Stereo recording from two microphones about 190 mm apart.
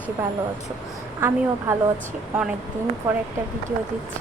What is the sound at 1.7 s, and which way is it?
Speech, 10° right (ahead or behind).